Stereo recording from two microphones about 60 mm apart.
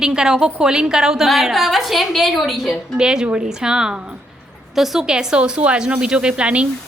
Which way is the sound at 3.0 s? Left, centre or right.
Centre.